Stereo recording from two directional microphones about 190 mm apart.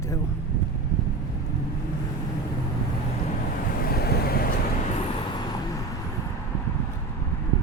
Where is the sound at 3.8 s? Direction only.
55° left (ahead or behind).